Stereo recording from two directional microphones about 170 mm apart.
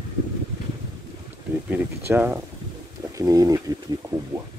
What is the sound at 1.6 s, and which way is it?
Speech, 10° right (ahead or behind).